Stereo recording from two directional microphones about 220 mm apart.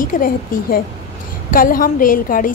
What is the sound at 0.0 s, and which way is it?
A woman's voice, 40° left (ahead or behind).